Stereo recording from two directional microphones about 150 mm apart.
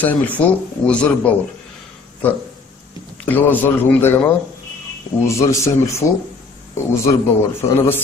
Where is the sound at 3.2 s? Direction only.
10° left (ahead or behind).